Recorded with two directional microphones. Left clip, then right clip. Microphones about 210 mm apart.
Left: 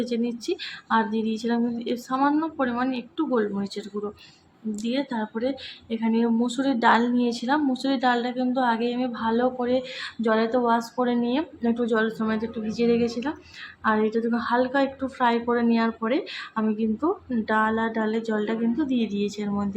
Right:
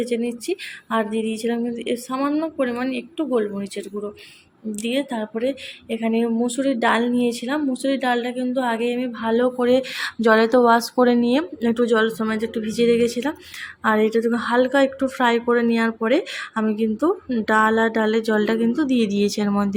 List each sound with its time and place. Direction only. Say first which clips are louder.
0.0 s a woman's voice: right 4 dB; centre (ahead or behind); by 19.7 s 25° right (ahead or behind)